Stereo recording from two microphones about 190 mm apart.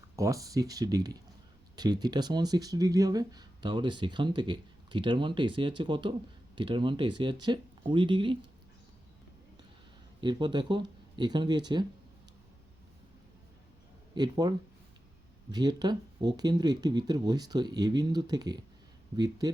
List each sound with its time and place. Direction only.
0.2 s speech: 15° right (ahead or behind)
10.2 s speech: 25° right (ahead or behind)
14.2 s speech: 20° right (ahead or behind)
15.5 s speech: 20° right (ahead or behind)